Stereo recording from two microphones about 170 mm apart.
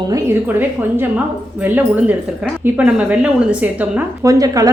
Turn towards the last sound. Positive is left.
turn(degrees=-20)  # may be behind; listen again after turning